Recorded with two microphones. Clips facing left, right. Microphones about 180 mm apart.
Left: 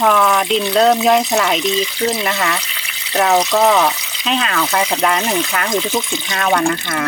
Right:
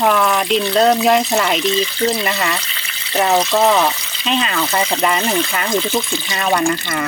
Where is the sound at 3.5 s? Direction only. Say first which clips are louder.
Left 1 dB; centre (ahead or behind).